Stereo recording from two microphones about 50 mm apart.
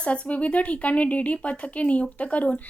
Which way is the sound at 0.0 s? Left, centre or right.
Left.